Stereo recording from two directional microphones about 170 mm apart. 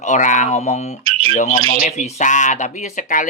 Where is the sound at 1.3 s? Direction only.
40° left (ahead or behind).